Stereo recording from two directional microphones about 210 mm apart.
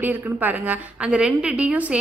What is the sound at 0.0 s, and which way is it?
A woman's voice, 10° right (ahead or behind).